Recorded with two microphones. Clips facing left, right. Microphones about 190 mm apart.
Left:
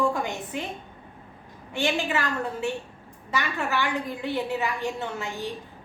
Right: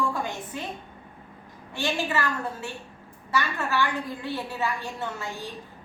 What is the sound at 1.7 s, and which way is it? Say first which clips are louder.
A woman's voice: left 2 dB; 15° left (ahead or behind).